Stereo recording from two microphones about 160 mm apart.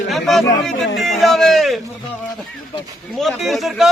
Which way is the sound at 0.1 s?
Centre (ahead or behind).